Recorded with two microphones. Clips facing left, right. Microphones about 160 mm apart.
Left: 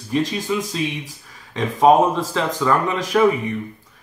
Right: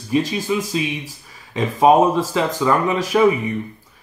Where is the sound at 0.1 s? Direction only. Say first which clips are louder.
Right 2 dB; 5° right (ahead or behind).